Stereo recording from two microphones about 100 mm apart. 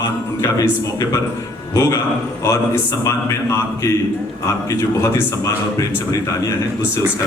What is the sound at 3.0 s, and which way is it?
A man's voice, 30° left (ahead or behind).